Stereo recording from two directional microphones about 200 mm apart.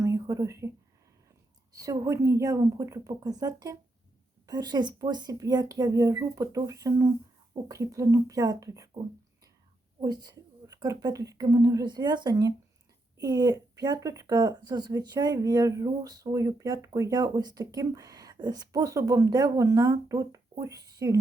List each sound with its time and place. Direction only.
0.0 s a sound: 15° right (ahead or behind)
1.7 s speech: 15° right (ahead or behind)
10.0 s speech: 20° right (ahead or behind)